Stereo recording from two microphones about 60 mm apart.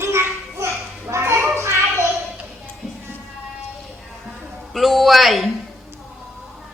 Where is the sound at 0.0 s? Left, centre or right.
Right.